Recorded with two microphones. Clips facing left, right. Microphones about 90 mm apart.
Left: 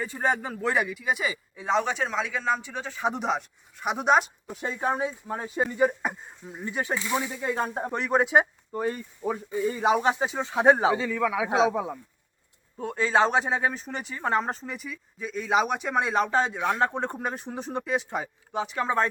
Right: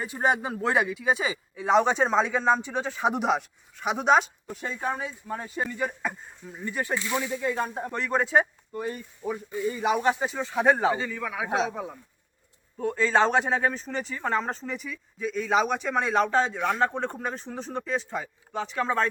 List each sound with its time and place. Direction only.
0.0 s speech: 15° right (ahead or behind)
1.5 s speech: 10° right (ahead or behind)
1.9 s speech: 25° right (ahead or behind); by 3.4 s 5° right (ahead or behind)
3.8 s speech: 5° left (ahead or behind)
4.8 s speech: 25° left (ahead or behind)
8.8 s speech: 40° left (ahead or behind)
9.8 s speech: 25° left (ahead or behind)
10.9 s a man's voice: 90° left
12.8 s speech: 15° left (ahead or behind)
13.1 s speech: 5° left (ahead or behind)